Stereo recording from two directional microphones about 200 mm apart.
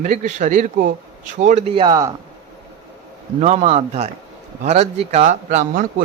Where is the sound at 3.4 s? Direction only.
35° right (ahead or behind).